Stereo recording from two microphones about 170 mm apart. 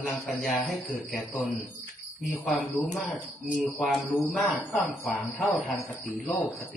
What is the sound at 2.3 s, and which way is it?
A man's voice, 5° left (ahead or behind).